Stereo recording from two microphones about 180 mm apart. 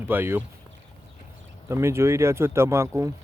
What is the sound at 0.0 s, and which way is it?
Speech, 10° right (ahead or behind).